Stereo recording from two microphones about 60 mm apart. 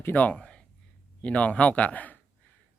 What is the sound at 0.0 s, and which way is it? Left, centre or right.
Speech, left.